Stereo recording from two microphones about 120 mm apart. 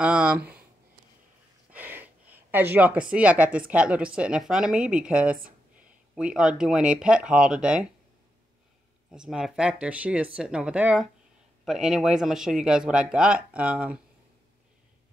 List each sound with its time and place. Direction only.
0.0 s speech: 10° right (ahead or behind)
1.7 s speech: 15° right (ahead or behind)
9.1 s speech: 5° right (ahead or behind)